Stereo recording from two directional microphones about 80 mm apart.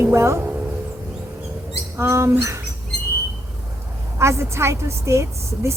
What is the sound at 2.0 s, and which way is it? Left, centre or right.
Speech, right.